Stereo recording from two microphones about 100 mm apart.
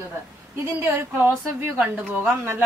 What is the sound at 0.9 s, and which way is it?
A woman's voice, 20° right (ahead or behind).